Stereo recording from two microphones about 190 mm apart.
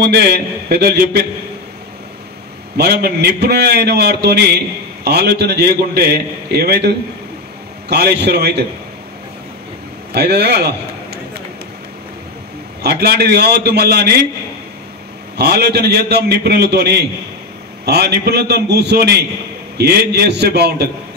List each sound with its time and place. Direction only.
0.0 s a man's voice: 55° right (ahead or behind)
2.8 s a man's voice: 60° right (ahead or behind)
10.1 s a man's voice: 60° right (ahead or behind)
12.8 s a man's voice: 55° right (ahead or behind)
15.3 s a man's voice: 55° right (ahead or behind)